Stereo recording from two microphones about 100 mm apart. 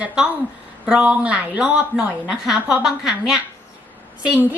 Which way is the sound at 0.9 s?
10° right (ahead or behind).